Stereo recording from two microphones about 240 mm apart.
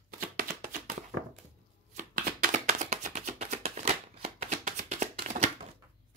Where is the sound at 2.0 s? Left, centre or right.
Right.